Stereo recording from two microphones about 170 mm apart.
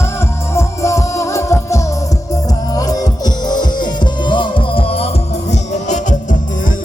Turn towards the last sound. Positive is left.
turn(degrees=45)  # may be behind; listen again after turning